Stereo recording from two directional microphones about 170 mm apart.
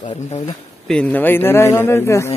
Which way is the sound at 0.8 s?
5° left (ahead or behind).